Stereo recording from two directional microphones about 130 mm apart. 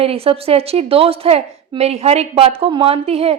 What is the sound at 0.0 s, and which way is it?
A woman's voice, 50° right (ahead or behind).